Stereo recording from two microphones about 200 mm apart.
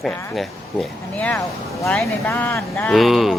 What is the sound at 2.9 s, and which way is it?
Speech, centre (ahead or behind).